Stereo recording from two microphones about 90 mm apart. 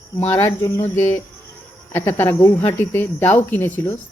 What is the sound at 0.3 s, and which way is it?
Speech, 25° left (ahead or behind).